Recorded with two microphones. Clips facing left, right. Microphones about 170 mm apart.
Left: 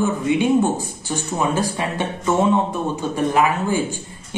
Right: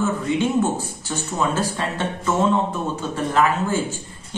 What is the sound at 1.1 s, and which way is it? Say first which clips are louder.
A man's voice: left 2 dB; 15° left (ahead or behind).